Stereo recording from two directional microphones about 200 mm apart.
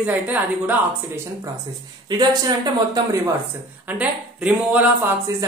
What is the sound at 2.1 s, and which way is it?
Speech, 20° right (ahead or behind).